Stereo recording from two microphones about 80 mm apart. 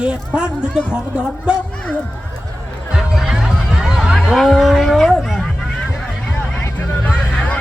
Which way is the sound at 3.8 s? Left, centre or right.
Centre.